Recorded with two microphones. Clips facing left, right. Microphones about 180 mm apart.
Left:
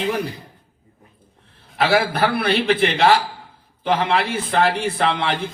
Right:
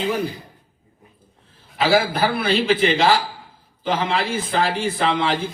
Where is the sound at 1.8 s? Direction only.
65° left (ahead or behind).